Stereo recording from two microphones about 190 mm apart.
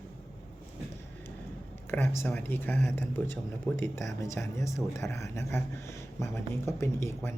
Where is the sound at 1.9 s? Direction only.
15° left (ahead or behind).